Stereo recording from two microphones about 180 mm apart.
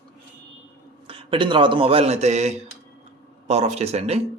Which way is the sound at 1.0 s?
30° right (ahead or behind).